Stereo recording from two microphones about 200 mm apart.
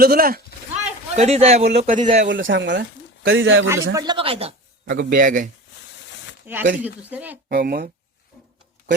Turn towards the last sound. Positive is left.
turn(degrees=-50)  # may be behind; listen again after turning